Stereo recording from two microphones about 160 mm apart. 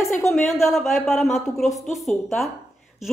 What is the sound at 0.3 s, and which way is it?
A woman's voice, centre (ahead or behind).